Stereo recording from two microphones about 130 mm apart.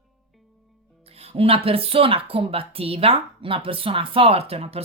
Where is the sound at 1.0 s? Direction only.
50° right (ahead or behind).